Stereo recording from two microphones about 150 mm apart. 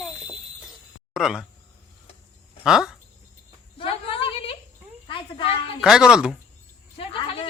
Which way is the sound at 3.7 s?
40° left (ahead or behind).